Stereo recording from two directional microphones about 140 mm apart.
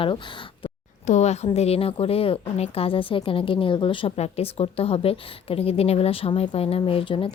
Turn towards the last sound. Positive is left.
turn(degrees=40)  # may be behind; listen again after turning